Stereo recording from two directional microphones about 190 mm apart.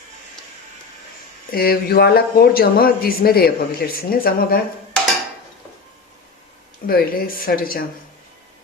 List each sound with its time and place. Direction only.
1.5 s a man's voice: 50° left (ahead or behind)
6.8 s a man's voice: 50° left (ahead or behind)